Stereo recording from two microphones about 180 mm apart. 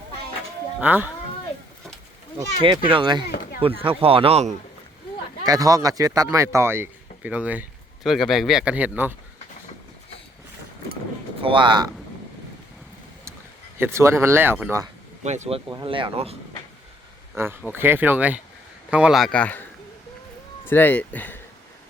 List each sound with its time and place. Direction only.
0.8 s speech: 10° right (ahead or behind)
2.6 s speech: 25° right (ahead or behind)
5.5 s speech: 20° right (ahead or behind)
11.4 s speech: 25° right (ahead or behind)
13.7 s speech: 15° right (ahead or behind)
15.2 s speech: 40° right (ahead or behind)
15.7 s speech: 25° right (ahead or behind)
17.3 s speech: 10° right (ahead or behind); by 19.6 s 10° left (ahead or behind)
20.7 s speech: 10° left (ahead or behind)